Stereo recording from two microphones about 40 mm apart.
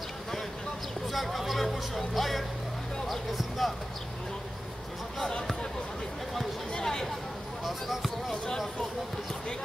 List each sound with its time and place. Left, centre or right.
1.0 s music: centre
3.1 s speech: centre
6.7 s speech: centre
7.6 s speech: centre